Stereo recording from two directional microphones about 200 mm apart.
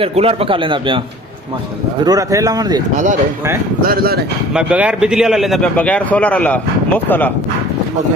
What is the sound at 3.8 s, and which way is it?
Speech, 50° right (ahead or behind).